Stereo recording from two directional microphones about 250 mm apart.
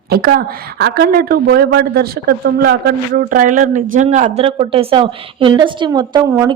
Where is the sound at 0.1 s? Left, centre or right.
Right.